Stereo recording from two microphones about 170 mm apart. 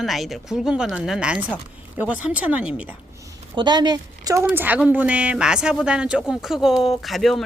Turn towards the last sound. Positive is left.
turn(degrees=0)  # may be behind; listen again after turning